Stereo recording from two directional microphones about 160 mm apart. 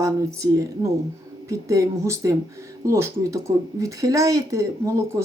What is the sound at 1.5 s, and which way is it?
Speech, 20° right (ahead or behind).